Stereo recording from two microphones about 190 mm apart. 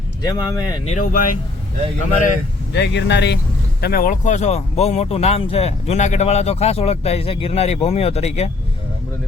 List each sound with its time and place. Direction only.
0.2 s speech: 20° left (ahead or behind)
0.9 s speech: 45° left (ahead or behind)
2.7 s speech: 65° left (ahead or behind)
3.8 s speech: 55° left (ahead or behind); by 8.4 s 35° left (ahead or behind)